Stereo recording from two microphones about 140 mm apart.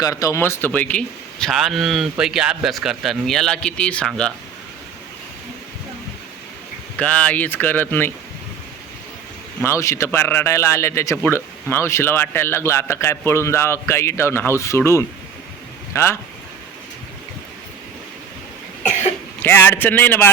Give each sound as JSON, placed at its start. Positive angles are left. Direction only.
{"t": 0.0, "sound": "a man's voice", "side_deg": 25}
{"t": 7.0, "sound": "speech", "side_deg": 10}
{"t": 9.6, "sound": "speech", "side_deg": 20}
{"t": 19.4, "sound": "speech", "side_deg": 15}